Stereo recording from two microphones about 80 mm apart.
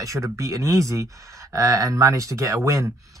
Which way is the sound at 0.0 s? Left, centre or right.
Right.